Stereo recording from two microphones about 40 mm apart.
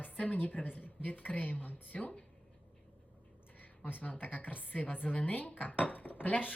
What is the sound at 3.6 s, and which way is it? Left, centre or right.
A woman's voice, left.